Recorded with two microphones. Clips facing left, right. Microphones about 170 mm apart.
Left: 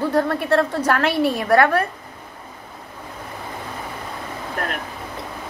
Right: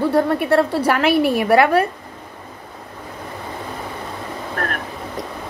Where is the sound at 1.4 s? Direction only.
10° right (ahead or behind).